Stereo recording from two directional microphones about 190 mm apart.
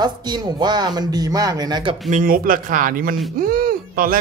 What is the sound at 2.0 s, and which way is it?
Speech, 45° right (ahead or behind).